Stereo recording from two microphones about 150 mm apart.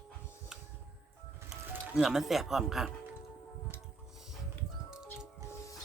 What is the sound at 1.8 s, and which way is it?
Speech, 5° right (ahead or behind).